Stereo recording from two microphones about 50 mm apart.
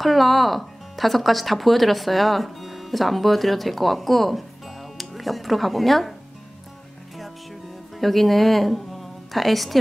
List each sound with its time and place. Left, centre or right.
0.0 s speech: centre
8.0 s a woman's voice: centre